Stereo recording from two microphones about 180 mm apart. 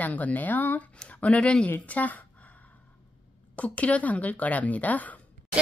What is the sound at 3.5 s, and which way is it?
A woman's voice, 5° left (ahead or behind).